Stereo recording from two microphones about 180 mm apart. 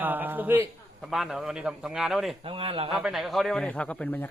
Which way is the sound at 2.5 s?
30° right (ahead or behind).